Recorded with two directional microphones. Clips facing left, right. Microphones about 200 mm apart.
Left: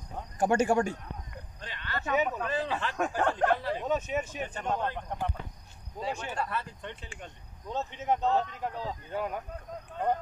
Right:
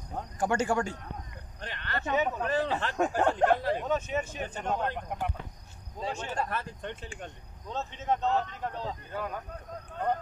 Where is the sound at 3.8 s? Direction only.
5° left (ahead or behind).